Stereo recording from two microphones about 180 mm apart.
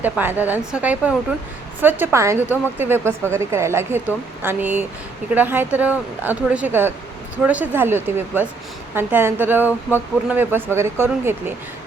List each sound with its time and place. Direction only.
0.0 s speech: 10° right (ahead or behind)